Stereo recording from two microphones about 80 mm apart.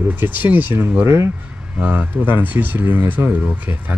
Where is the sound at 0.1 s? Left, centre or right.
Right.